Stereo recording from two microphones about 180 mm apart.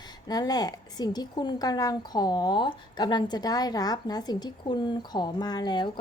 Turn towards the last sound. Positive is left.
turn(degrees=25)  # may be behind; listen again after turning